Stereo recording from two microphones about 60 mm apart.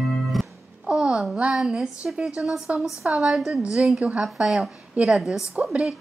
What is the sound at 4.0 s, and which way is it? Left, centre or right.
Speech, right.